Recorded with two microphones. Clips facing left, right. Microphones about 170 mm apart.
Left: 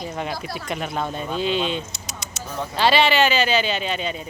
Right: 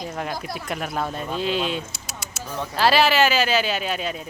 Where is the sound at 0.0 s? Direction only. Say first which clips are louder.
Left 1 dB; 5° left (ahead or behind).